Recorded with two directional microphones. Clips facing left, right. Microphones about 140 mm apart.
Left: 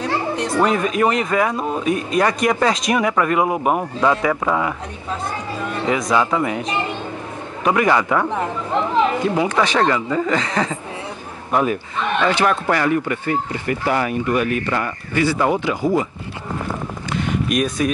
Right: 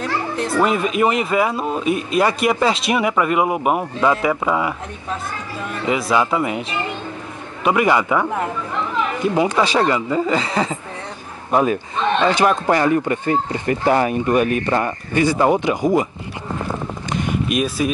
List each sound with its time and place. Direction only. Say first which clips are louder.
0.5 s speech: even; 5° right (ahead or behind)
5.9 s speech: right 1 dB; 10° right (ahead or behind)
7.6 s speech: even; 15° right (ahead or behind)
8.7 s speech: left 7 dB; 25° left (ahead or behind)
9.2 s speech: right 1 dB; 20° right (ahead or behind)
11.5 s speech: right 2 dB; 25° right (ahead or behind)
17.1 s a sound: even; 10° right (ahead or behind)